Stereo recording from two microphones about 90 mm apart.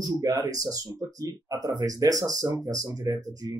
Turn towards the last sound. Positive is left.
turn(degrees=-45)  # may be behind; listen again after turning